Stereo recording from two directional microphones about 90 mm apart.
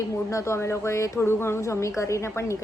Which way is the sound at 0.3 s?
35° left (ahead or behind).